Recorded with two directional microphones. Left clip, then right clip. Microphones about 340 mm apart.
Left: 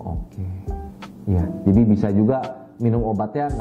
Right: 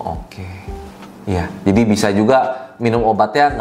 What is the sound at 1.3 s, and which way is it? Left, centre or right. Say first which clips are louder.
A man's voice: right 5 dB; centre.